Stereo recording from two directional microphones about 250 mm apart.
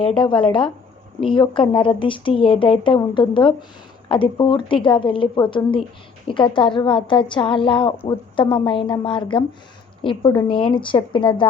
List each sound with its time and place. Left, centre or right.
0.2 s speech: centre